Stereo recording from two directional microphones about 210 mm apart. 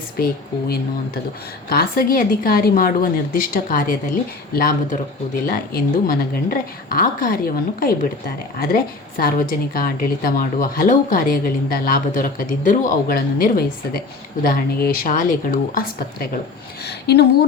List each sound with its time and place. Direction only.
1.7 s a woman's voice: 45° left (ahead or behind)
16.8 s speech: 50° left (ahead or behind)